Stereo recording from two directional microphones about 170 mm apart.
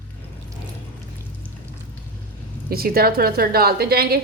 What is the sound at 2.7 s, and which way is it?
A woman's voice, 60° right (ahead or behind).